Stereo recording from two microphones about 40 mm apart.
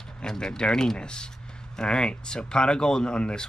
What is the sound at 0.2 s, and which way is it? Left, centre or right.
Speech, centre.